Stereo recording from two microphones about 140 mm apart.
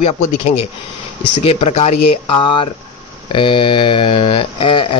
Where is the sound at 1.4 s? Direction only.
45° left (ahead or behind).